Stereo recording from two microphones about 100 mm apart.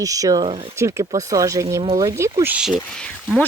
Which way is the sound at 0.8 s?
30° right (ahead or behind).